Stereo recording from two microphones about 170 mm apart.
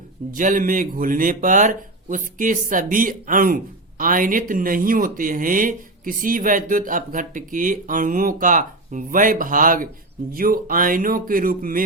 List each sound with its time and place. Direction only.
0.3 s speech: 50° right (ahead or behind)